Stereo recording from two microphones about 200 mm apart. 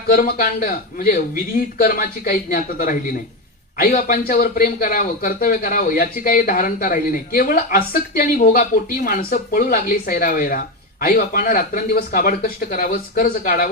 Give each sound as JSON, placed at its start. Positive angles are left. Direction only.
{"t": 0.1, "sound": "speech", "side_deg": 50}